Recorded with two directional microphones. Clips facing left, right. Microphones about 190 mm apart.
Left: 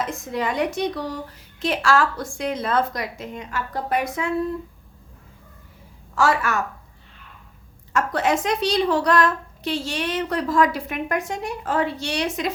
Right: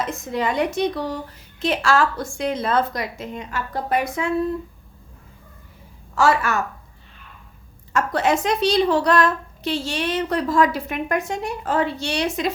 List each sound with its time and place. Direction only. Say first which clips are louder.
0.0 s a woman's voice: right 2 dB; 25° right (ahead or behind)
6.1 s a woman's voice: right 2 dB; 25° right (ahead or behind)
7.9 s a woman's voice: right 1 dB; 25° right (ahead or behind)